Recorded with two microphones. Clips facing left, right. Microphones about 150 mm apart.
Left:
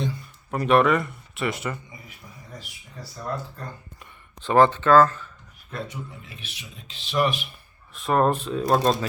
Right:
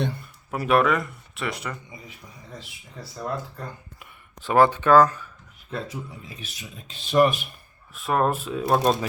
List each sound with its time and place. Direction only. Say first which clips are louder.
0.0 s a sound: right 1 dB; 60° right (ahead or behind)
0.5 s speech: left 2 dB; 5° right (ahead or behind)
4.0 s speech: left 1 dB; 10° right (ahead or behind)
5.7 s speech: right 2 dB; 35° right (ahead or behind)
7.9 s speech: left 2 dB; 5° right (ahead or behind)